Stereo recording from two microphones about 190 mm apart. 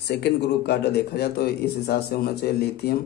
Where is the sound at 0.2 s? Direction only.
60° left (ahead or behind).